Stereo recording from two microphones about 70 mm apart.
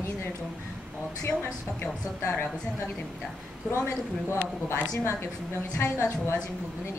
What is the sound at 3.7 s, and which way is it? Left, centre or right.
A man's voice, left.